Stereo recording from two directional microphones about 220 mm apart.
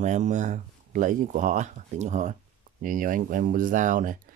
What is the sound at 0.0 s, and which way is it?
Speech, 35° right (ahead or behind).